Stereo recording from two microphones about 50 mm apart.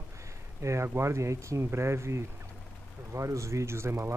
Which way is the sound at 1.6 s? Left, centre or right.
Right.